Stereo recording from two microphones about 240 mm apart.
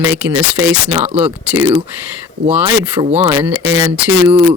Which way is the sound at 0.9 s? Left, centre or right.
Right.